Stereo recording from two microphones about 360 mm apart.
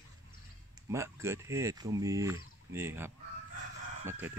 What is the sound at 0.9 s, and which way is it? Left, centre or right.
Speech, centre.